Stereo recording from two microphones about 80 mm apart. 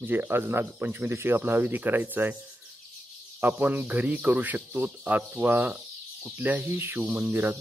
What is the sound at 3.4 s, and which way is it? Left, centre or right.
Speech, right.